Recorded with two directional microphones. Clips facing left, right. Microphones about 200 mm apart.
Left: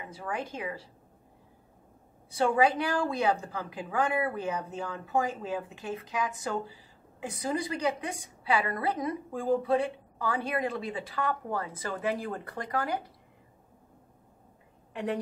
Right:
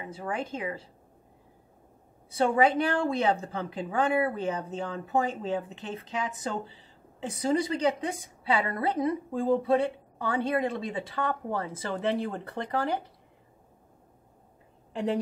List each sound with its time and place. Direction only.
0.0 s a woman's voice: 25° right (ahead or behind)
2.3 s a woman's voice: 25° right (ahead or behind)
14.9 s a woman's voice: 30° right (ahead or behind)